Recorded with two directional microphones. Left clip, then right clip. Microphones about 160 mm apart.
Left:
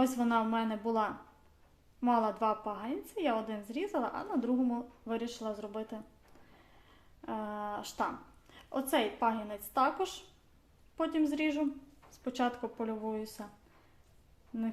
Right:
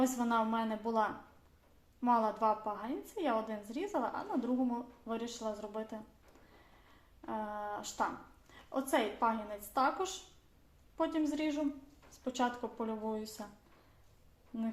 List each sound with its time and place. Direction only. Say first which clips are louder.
0.0 s a woman's voice: left 2 dB; 30° left (ahead or behind)
7.2 s a woman's voice: left 1 dB; 35° left (ahead or behind)
14.5 s speech: left 2 dB; 25° left (ahead or behind)